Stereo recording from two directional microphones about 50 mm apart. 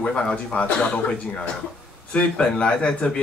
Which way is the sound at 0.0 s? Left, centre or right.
Left.